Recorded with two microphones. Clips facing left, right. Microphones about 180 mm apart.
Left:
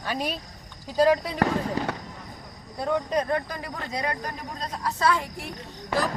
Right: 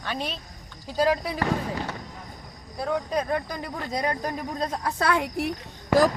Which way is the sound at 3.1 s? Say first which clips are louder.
Left 1 dB; 10° right (ahead or behind).